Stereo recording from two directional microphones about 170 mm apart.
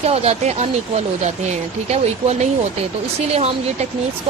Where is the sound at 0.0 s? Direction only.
35° right (ahead or behind).